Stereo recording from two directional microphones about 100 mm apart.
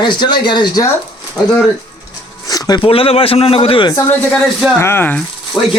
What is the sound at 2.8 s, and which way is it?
A man's voice, 70° left (ahead or behind).